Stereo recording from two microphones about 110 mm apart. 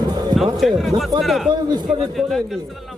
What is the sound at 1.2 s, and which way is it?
Speech, centre (ahead or behind).